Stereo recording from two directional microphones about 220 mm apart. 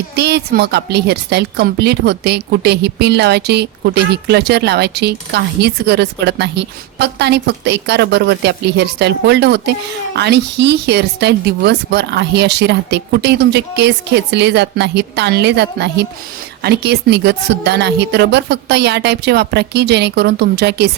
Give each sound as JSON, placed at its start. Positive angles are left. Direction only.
{"t": 0.2, "sound": "a woman's voice", "side_deg": -50}